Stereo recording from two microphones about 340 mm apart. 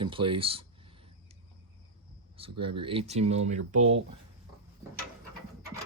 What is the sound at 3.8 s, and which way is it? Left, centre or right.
Speech, right.